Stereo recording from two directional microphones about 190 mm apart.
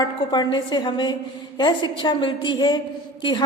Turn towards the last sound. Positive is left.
turn(degrees=25)  # may be behind; listen again after turning